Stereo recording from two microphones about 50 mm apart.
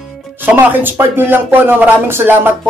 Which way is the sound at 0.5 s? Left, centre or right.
Right.